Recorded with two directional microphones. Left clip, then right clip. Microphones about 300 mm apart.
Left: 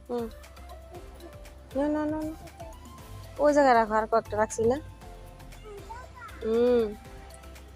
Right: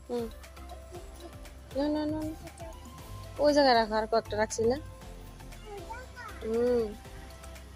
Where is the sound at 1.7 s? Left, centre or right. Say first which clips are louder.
Left 3 dB; centre.